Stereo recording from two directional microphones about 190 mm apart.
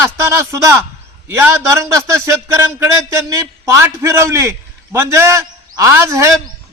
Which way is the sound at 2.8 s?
15° right (ahead or behind).